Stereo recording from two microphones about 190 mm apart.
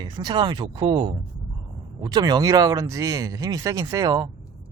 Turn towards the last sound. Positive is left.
turn(degrees=-20)  # may be behind; listen again after turning